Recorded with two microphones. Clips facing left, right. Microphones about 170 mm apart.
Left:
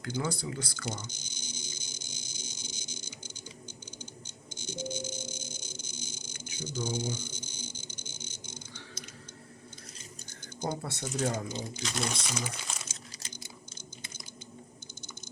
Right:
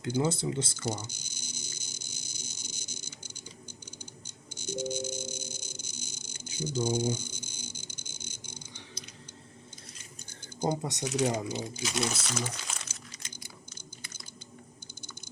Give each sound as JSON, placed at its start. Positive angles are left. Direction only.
{"t": 0.2, "sound": "speech", "side_deg": -25}
{"t": 0.9, "sound": "a sound", "side_deg": -10}
{"t": 4.5, "sound": "music", "side_deg": -10}
{"t": 10.6, "sound": "speech", "side_deg": -15}
{"t": 11.0, "sound": "speech", "side_deg": -70}
{"t": 11.3, "sound": "speech", "side_deg": -10}
{"t": 12.2, "sound": "speech", "side_deg": 10}
{"t": 12.6, "sound": "crumpling", "side_deg": 5}